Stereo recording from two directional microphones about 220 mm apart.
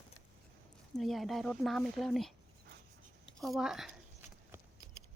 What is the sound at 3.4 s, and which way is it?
Speech, centre (ahead or behind).